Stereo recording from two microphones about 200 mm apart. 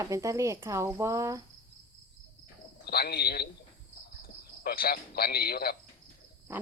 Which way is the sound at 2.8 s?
55° left (ahead or behind).